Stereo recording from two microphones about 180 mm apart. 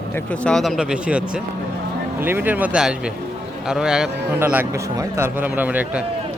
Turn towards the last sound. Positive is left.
turn(degrees=-10)  # may be behind; listen again after turning